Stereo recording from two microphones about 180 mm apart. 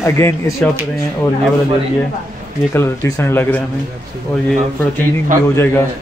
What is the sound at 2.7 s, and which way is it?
Speech, 15° left (ahead or behind).